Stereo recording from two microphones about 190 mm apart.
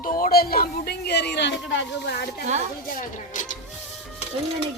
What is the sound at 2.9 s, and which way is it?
Speech, 45° left (ahead or behind).